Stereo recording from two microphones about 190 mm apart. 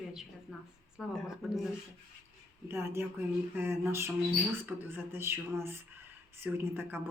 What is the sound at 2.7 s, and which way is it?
Speech, 15° right (ahead or behind).